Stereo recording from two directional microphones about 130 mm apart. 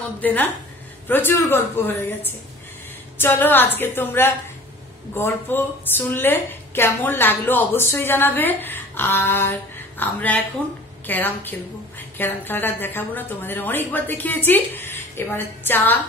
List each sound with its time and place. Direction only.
0.2 s a woman's voice: 10° left (ahead or behind)
3.2 s a woman's voice: 15° left (ahead or behind)